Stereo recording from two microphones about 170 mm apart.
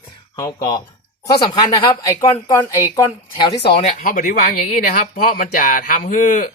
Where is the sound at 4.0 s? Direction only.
50° left (ahead or behind).